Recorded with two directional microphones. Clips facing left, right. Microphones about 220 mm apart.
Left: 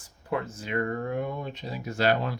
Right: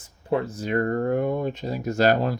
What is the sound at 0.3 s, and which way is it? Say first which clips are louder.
Speech: right 6 dB; 35° right (ahead or behind).